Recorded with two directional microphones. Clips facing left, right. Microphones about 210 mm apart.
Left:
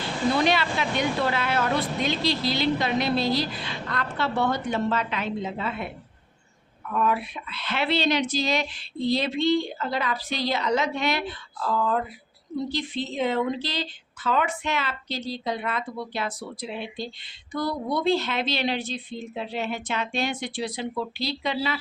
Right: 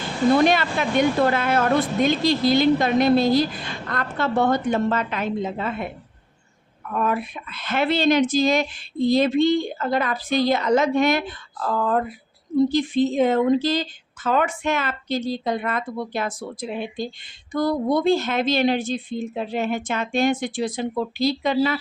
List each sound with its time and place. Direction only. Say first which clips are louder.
0.3 s a woman's voice: right 5 dB; 50° right (ahead or behind)
6.9 s a woman's voice: right 2 dB; 45° right (ahead or behind)